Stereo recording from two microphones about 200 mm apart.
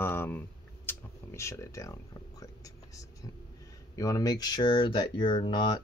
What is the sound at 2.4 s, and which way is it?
Whispering, 15° left (ahead or behind).